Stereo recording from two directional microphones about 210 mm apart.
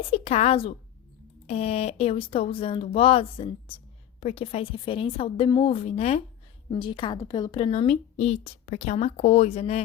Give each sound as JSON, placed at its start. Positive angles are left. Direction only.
{"t": 0.1, "sound": "a woman's voice", "side_deg": 30}